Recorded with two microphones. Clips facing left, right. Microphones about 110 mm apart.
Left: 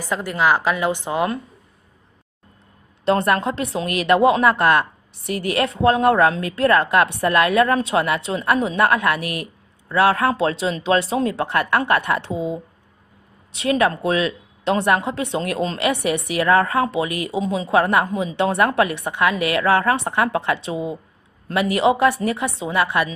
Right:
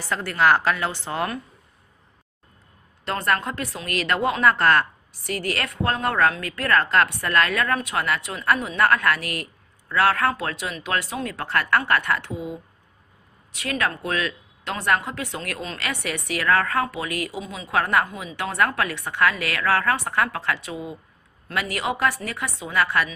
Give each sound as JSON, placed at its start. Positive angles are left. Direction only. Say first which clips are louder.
{"t": 0.1, "sound": "a woman's voice", "louder": "left 1 dB", "side_deg": 10}
{"t": 3.1, "sound": "a woman's voice", "louder": "left 6 dB", "side_deg": 25}